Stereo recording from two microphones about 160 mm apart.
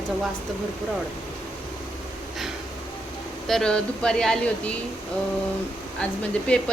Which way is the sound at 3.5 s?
5° left (ahead or behind).